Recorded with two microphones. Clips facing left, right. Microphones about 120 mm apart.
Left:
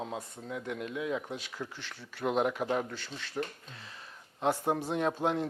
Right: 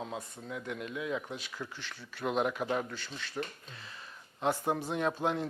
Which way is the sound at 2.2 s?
45° left (ahead or behind).